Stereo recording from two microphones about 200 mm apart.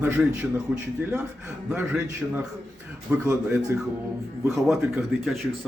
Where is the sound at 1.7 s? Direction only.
5° right (ahead or behind).